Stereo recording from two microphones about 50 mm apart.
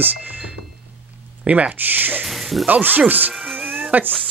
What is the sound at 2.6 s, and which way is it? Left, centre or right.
Speech, right.